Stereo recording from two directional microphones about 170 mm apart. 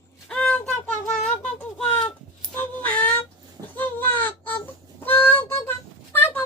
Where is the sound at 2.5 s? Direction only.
10° left (ahead or behind).